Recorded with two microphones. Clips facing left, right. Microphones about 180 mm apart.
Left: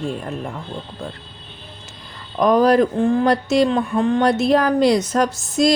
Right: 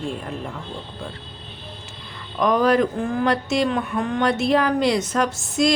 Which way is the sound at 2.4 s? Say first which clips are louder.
Left 4 dB; 35° left (ahead or behind).